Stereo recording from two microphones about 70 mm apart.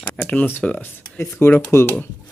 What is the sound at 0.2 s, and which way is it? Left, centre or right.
Speech, left.